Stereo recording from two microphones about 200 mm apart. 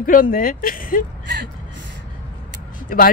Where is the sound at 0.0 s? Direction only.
45° left (ahead or behind).